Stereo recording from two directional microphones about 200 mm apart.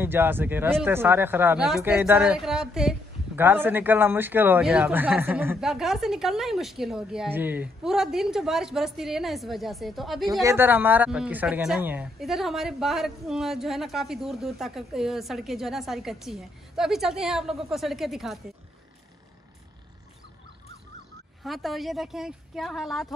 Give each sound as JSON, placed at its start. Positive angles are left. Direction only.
{"t": 0.0, "sound": "speech", "side_deg": -10}
{"t": 10.4, "sound": "speech", "side_deg": -10}
{"t": 21.5, "sound": "speech", "side_deg": 0}